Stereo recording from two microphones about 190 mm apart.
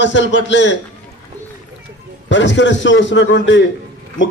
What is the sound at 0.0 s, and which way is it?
Speech, 75° left (ahead or behind).